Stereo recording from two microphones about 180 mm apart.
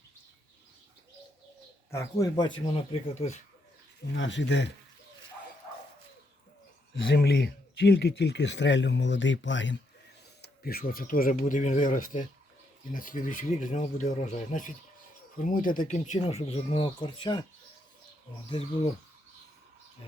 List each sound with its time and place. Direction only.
1.9 s speech: 15° left (ahead or behind)
2.7 s speech: 35° left (ahead or behind)
4.1 s speech: 90° left
7.1 s speech: 65° left (ahead or behind); by 9.7 s 90° left
10.4 s speech: 55° left (ahead or behind); by 17.4 s 25° left (ahead or behind)